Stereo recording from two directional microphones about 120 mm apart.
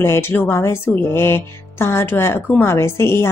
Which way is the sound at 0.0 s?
20° left (ahead or behind).